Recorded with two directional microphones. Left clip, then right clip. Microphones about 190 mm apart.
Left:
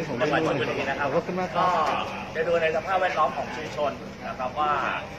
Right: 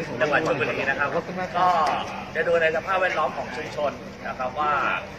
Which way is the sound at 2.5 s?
15° right (ahead or behind).